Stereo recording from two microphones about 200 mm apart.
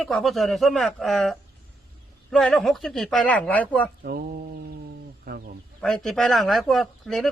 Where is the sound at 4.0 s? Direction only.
50° right (ahead or behind).